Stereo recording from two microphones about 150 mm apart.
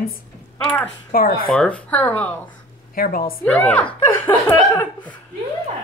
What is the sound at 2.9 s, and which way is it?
Speech, 75° left (ahead or behind).